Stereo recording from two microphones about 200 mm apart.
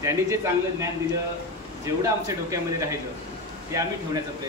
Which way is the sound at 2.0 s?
15° right (ahead or behind).